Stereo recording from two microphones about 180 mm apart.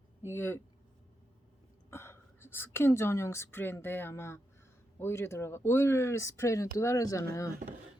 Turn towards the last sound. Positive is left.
turn(degrees=20)  # may be behind; listen again after turning